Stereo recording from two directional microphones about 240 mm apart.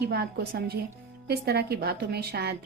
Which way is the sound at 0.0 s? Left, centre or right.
Right.